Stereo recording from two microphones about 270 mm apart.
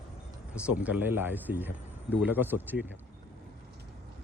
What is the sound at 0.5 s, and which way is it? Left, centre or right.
Speech, centre.